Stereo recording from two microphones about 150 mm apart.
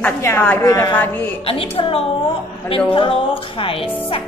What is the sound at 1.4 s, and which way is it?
Speech, 40° left (ahead or behind).